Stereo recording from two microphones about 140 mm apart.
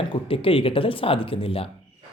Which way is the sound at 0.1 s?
40° left (ahead or behind).